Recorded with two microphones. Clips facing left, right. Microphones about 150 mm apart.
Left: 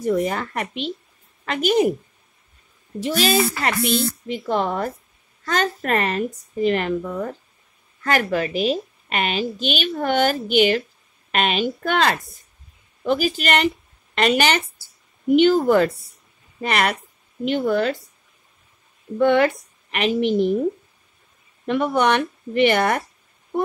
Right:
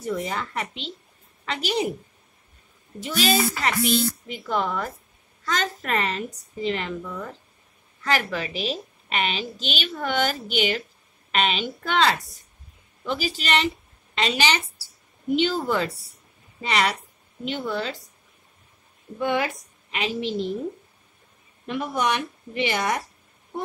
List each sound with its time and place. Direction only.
0.0 s a woman's voice: 45° left (ahead or behind)
3.0 s a woman's voice: 45° left (ahead or behind)
19.1 s speech: 60° left (ahead or behind)
21.6 s speech: 60° left (ahead or behind)